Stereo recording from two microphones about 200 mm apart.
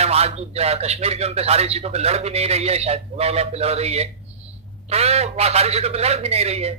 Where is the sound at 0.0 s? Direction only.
30° right (ahead or behind).